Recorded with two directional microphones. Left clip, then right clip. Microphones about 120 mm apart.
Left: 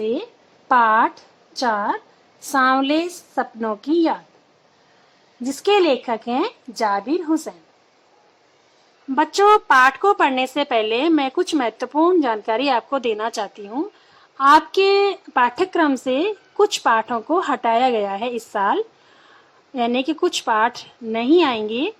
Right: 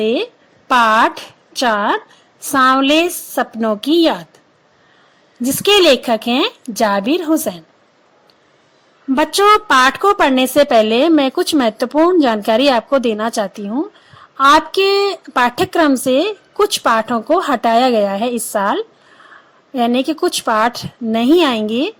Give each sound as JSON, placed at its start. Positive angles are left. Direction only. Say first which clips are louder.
{"t": 0.7, "sound": "speech", "louder": "right 4 dB", "side_deg": -40}
{"t": 2.5, "sound": "speech", "louder": "right 5 dB", "side_deg": -25}
{"t": 5.4, "sound": "speech", "louder": "right 5 dB", "side_deg": -40}
{"t": 9.0, "sound": "a woman's voice", "louder": "right 3 dB", "side_deg": -30}